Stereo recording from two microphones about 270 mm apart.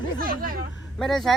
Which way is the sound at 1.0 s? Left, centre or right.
Centre.